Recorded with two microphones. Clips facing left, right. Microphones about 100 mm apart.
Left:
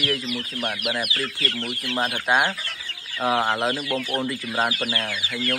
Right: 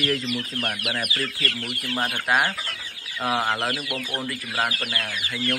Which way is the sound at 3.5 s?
20° left (ahead or behind).